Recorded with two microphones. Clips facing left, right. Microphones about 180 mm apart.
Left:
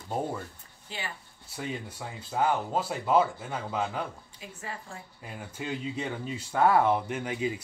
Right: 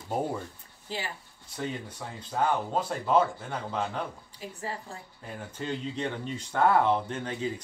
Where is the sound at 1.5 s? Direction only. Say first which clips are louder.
Right 1 dB; 10° left (ahead or behind).